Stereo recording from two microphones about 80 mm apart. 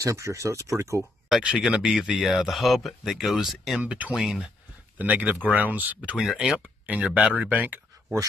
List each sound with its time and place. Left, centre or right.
0.0 s speech: right
1.6 s speech: centre
3.8 s speech: centre
4.9 s speech: right
5.9 s speech: centre; by 7.8 s right